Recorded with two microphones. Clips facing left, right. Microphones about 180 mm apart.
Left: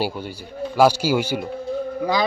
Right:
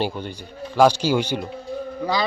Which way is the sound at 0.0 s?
5° left (ahead or behind).